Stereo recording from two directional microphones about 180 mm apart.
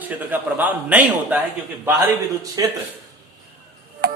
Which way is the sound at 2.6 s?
20° right (ahead or behind).